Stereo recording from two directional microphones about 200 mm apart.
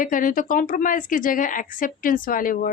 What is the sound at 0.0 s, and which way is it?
A woman's voice, 45° left (ahead or behind).